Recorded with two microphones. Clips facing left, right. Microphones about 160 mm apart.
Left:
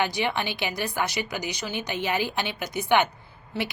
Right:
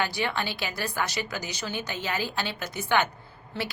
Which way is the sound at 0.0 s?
20° left (ahead or behind).